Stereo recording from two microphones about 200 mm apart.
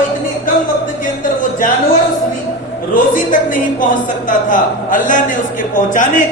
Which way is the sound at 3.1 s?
40° left (ahead or behind).